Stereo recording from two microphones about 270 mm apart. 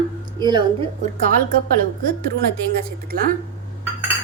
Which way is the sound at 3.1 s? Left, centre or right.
Right.